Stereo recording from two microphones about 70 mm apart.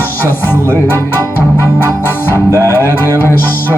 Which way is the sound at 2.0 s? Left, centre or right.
Left.